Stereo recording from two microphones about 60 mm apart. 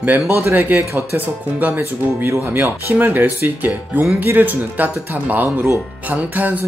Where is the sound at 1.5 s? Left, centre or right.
Right.